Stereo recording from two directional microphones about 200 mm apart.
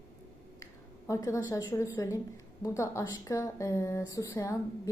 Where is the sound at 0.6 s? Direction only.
15° left (ahead or behind).